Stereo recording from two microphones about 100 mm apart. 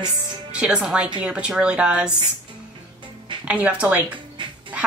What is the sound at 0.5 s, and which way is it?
Speech, 10° right (ahead or behind).